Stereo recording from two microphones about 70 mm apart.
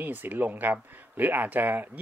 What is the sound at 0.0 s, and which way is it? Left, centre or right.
Speech, right.